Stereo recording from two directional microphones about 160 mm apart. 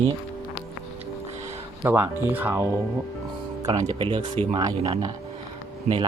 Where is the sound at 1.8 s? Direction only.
15° right (ahead or behind).